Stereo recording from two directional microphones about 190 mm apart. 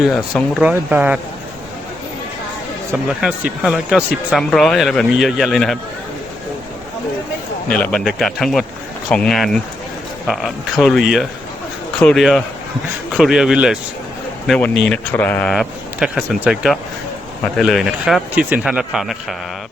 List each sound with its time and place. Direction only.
0.0 s speech: centre (ahead or behind)
2.9 s speech: 5° right (ahead or behind)
7.7 s speech: 5° left (ahead or behind)